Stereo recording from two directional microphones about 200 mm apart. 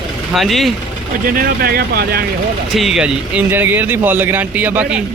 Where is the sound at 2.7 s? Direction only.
Centre (ahead or behind).